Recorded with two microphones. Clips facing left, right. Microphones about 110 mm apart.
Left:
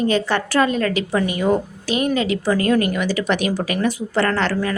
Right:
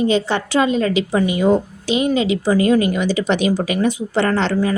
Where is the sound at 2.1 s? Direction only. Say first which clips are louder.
Right 2 dB; 45° left (ahead or behind).